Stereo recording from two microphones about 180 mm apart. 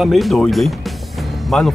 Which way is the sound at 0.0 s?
Centre (ahead or behind).